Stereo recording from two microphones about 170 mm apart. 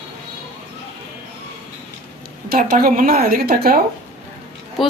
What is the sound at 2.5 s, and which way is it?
A woman's voice, 55° right (ahead or behind).